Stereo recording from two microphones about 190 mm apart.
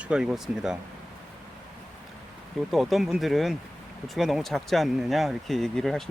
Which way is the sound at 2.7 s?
Centre (ahead or behind).